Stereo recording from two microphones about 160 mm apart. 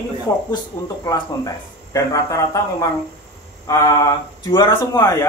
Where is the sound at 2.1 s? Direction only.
20° left (ahead or behind).